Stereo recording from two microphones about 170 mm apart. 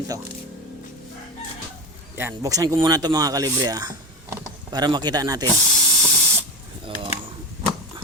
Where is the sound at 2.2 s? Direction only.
15° right (ahead or behind).